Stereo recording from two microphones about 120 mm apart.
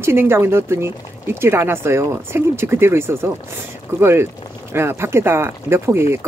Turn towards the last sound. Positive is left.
turn(degrees=-20)  # may be behind; listen again after turning